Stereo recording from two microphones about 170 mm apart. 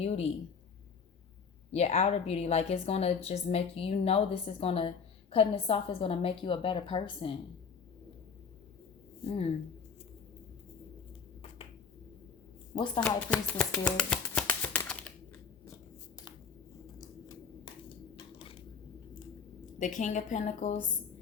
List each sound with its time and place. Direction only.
0.0 s a woman's voice: 40° left (ahead or behind)
1.7 s a woman's voice: 40° left (ahead or behind)
12.7 s speech: 25° left (ahead or behind)
13.0 s speech: 5° left (ahead or behind)
18.3 s a sound: 30° left (ahead or behind)
19.8 s a woman's voice: 45° left (ahead or behind)